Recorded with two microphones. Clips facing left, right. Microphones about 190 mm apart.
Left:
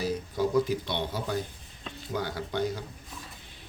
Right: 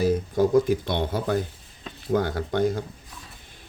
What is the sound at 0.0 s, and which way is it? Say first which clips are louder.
Speech: right 7 dB; 50° right (ahead or behind).